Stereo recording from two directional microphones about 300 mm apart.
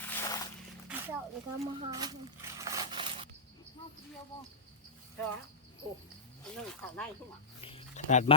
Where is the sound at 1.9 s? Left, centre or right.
Centre.